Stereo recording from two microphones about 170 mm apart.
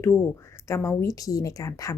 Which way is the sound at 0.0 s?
15° left (ahead or behind).